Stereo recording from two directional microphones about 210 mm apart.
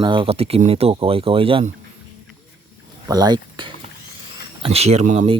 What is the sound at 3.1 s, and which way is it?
Speech, 20° right (ahead or behind).